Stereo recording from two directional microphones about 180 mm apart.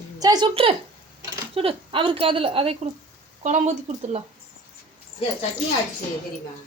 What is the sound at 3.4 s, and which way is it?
Speech, 40° right (ahead or behind).